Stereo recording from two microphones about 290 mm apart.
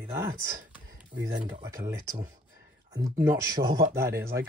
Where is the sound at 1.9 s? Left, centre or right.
Centre.